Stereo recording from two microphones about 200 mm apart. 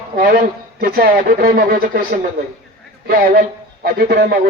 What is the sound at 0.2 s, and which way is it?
Speech, 45° right (ahead or behind).